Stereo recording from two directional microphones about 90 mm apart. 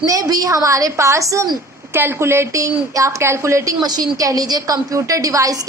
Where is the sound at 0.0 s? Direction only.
40° right (ahead or behind).